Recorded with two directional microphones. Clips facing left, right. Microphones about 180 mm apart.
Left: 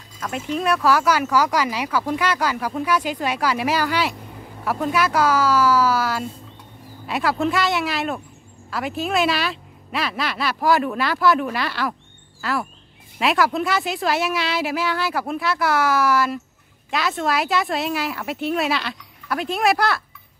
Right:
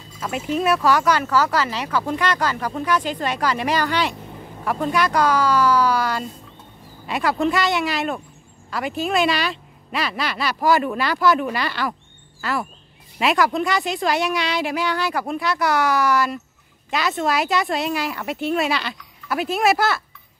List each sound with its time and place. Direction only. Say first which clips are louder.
0.2 s speech: right 2 dB; 5° right (ahead or behind)